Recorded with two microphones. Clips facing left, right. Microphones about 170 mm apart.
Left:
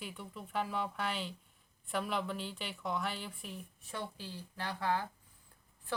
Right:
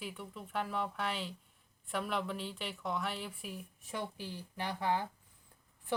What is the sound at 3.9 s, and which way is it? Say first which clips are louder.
A woman's voice: right 2 dB; 15° right (ahead or behind).